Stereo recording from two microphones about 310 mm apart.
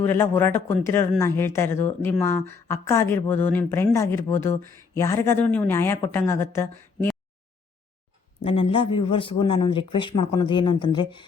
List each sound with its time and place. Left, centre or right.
0.0 s speech: centre
8.4 s speech: centre